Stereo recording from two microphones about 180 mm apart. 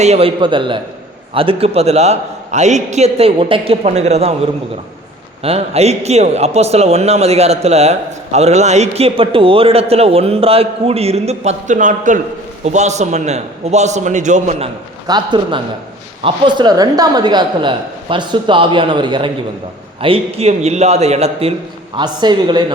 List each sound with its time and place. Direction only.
0.0 s a man's voice: 35° right (ahead or behind)
5.4 s a man's voice: 35° right (ahead or behind)
15.0 s a man's voice: 25° right (ahead or behind)
21.9 s a man's voice: 25° right (ahead or behind)